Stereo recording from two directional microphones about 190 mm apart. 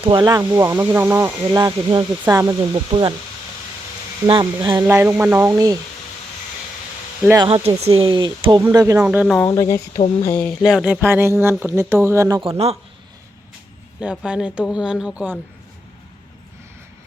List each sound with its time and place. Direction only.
0.0 s speech: 25° right (ahead or behind)
4.3 s speech: 25° right (ahead or behind)
4.8 s speech: 10° right (ahead or behind)
7.3 s speech: 25° right (ahead or behind)
9.0 s speech: centre (ahead or behind)
9.5 s speech: 15° left (ahead or behind)
10.4 s speech: centre (ahead or behind)
11.0 s speech: 10° right (ahead or behind)
12.4 s speech: 30° right (ahead or behind)
14.0 s speech: 5° right (ahead or behind)